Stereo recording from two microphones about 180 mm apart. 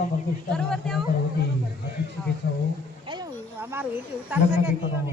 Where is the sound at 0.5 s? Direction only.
5° left (ahead or behind).